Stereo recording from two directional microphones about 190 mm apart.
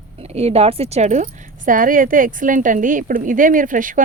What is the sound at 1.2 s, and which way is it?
Speech, 45° right (ahead or behind).